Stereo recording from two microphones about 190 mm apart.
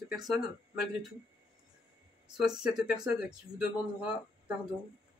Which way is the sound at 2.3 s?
5° right (ahead or behind).